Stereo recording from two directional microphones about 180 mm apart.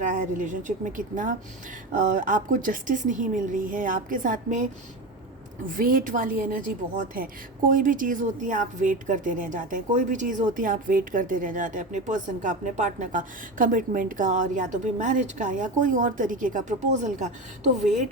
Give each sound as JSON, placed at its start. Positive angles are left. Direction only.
{"t": 0.0, "sound": "a woman's voice", "side_deg": -45}